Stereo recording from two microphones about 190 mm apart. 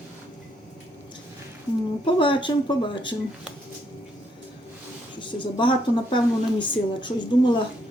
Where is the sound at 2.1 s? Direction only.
25° left (ahead or behind).